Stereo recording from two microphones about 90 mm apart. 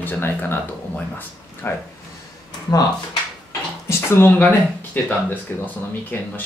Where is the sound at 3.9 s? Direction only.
25° left (ahead or behind).